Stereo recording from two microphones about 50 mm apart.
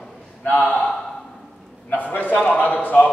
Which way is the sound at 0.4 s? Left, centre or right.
Left.